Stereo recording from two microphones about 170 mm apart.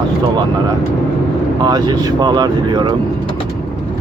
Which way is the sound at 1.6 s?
25° right (ahead or behind).